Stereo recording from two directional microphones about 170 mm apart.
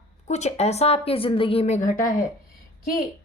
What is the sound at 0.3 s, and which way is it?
A woman's voice, 40° left (ahead or behind).